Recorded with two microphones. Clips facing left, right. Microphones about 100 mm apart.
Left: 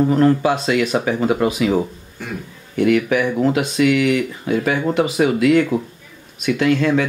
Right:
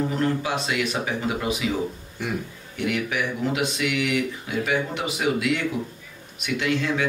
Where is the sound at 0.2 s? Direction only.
55° left (ahead or behind).